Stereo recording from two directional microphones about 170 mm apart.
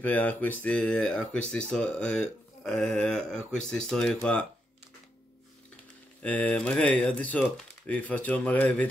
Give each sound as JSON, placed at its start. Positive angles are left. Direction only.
{"t": 0.0, "sound": "speech", "side_deg": 10}
{"t": 6.2, "sound": "speech", "side_deg": 10}